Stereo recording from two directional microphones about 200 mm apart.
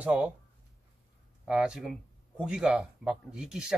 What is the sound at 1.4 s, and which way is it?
A man's voice, 5° right (ahead or behind).